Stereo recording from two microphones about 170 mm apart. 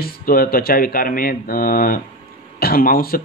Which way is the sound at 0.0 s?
60° left (ahead or behind).